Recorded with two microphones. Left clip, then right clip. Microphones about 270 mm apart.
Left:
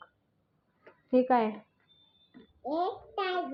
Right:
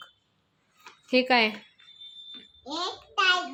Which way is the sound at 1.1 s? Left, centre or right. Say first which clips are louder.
Right 3 dB; centre.